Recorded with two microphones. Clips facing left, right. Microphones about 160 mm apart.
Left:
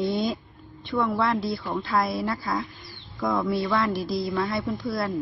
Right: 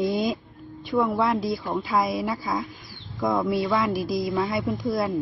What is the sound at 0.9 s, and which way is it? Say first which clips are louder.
Speech: right 2 dB; 20° right (ahead or behind).